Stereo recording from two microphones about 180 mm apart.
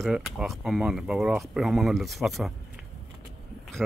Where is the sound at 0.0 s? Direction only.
Centre (ahead or behind).